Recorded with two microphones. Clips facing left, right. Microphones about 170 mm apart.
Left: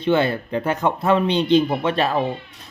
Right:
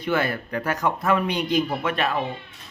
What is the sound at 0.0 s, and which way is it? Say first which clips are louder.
A man's voice: left 5 dB; 25° left (ahead or behind).